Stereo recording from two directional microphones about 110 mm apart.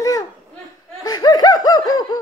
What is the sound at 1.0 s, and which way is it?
Laughter, 40° left (ahead or behind).